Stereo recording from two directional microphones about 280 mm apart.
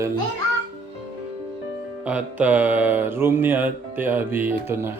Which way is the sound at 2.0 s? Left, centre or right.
Centre.